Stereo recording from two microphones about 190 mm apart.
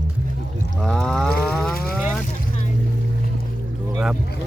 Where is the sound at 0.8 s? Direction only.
5° left (ahead or behind).